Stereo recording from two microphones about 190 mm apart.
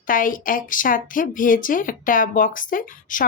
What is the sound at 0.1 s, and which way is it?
Speech, 45° left (ahead or behind).